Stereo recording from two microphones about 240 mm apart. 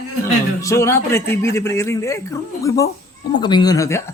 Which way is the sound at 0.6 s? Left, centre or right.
Centre.